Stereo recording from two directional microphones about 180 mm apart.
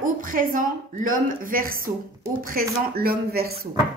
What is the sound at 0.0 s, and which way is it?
Speech, 50° right (ahead or behind).